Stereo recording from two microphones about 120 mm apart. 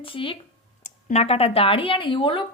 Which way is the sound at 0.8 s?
65° left (ahead or behind).